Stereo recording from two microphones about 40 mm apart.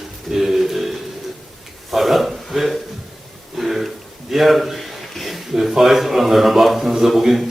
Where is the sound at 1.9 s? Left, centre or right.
Centre.